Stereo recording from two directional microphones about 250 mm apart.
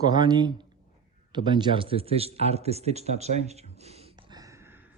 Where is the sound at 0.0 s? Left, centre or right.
Centre.